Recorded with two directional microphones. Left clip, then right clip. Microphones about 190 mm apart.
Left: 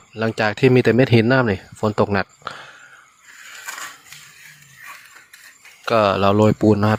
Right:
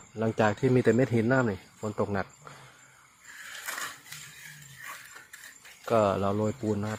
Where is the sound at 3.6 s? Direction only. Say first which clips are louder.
Left 4 dB; 50° right (ahead or behind).